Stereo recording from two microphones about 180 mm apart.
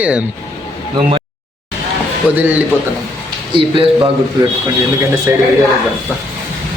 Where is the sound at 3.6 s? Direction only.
30° right (ahead or behind).